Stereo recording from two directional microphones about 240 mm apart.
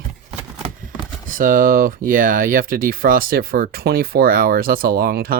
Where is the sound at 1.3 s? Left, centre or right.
Right.